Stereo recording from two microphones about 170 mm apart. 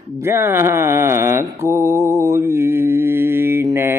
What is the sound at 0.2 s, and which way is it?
Mantra, 15° right (ahead or behind).